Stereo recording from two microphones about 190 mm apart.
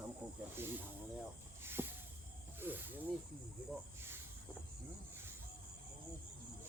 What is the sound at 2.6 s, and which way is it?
Snake, 10° right (ahead or behind).